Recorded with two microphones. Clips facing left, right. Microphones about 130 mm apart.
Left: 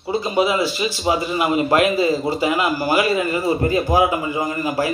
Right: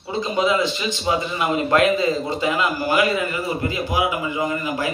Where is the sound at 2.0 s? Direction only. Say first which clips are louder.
Left 3 dB; 30° left (ahead or behind).